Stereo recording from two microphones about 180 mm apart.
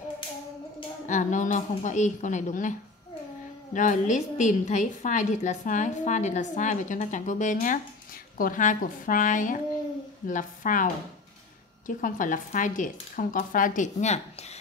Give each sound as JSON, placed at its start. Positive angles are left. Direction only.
{"t": 1.0, "sound": "a woman's voice", "side_deg": 45}
{"t": 3.7, "sound": "a woman's voice", "side_deg": 45}